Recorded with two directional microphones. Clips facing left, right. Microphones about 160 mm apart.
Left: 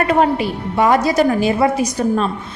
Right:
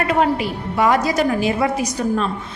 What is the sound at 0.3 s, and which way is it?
A woman's voice, 30° left (ahead or behind).